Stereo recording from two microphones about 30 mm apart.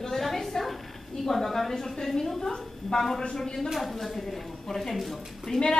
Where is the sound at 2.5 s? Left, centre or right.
Left.